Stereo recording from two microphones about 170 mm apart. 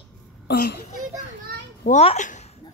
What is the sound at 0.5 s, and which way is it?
Speech, 70° left (ahead or behind).